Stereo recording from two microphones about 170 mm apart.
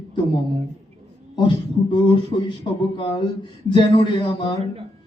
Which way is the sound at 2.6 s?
35° left (ahead or behind).